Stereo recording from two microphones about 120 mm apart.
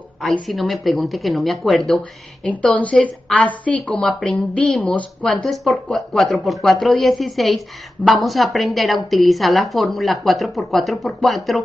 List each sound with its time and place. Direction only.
0.2 s a woman's voice: centre (ahead or behind)
2.6 s a woman's voice: 10° left (ahead or behind)